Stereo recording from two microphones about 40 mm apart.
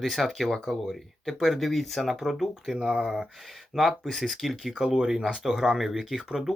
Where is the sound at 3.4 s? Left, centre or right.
Centre.